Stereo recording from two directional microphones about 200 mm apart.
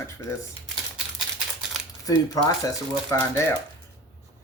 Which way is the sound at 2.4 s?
15° left (ahead or behind).